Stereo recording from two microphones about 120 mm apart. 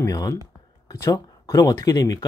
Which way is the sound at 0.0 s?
25° left (ahead or behind).